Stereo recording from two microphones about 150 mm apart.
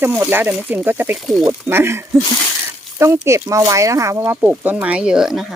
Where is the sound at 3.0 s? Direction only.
20° right (ahead or behind).